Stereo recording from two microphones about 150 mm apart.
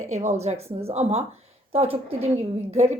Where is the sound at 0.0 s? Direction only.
55° right (ahead or behind).